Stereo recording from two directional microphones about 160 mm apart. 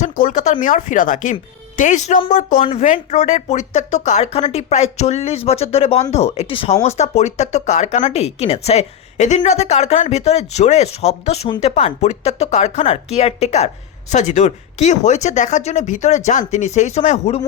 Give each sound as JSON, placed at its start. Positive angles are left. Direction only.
{"t": 0.0, "sound": "speech", "side_deg": 55}